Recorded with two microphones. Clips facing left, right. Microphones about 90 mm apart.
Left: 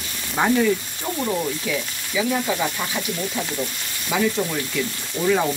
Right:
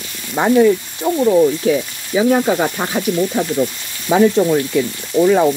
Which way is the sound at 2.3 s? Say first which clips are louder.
Right 8 dB; 50° right (ahead or behind).